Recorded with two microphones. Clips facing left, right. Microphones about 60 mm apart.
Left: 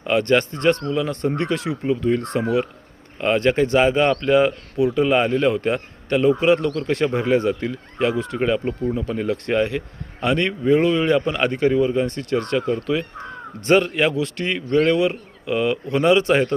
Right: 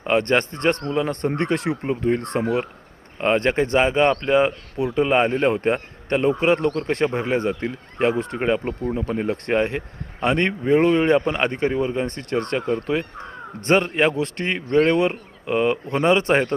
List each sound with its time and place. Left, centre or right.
0.0 s a man's voice: right